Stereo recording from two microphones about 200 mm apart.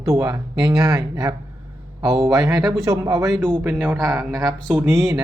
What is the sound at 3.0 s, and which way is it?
Speech, 15° right (ahead or behind).